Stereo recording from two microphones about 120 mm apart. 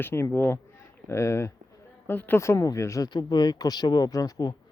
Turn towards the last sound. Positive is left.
turn(degrees=30)  # may be behind; listen again after turning